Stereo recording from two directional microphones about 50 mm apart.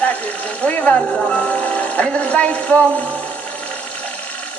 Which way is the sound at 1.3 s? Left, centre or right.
Left.